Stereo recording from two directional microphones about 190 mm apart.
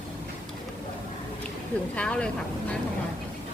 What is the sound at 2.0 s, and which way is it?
Speech, 5° left (ahead or behind).